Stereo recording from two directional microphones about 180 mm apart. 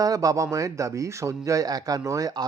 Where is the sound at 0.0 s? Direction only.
20° right (ahead or behind).